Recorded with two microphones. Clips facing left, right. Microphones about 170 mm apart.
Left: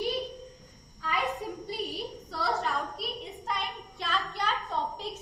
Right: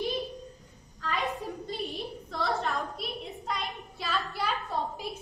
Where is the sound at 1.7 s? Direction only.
5° left (ahead or behind).